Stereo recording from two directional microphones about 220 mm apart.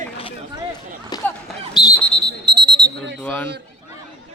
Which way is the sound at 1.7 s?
20° left (ahead or behind).